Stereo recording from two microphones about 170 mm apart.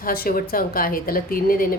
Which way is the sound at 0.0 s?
60° left (ahead or behind).